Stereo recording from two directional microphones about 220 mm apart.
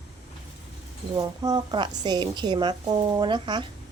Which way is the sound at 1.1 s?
20° right (ahead or behind).